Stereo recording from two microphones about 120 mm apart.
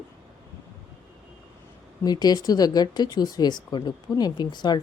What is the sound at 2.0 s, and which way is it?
Speech, 35° left (ahead or behind).